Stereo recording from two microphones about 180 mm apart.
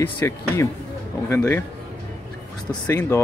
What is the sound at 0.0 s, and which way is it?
Speech, 10° left (ahead or behind).